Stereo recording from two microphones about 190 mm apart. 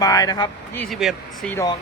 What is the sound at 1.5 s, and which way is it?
Speech, 15° left (ahead or behind).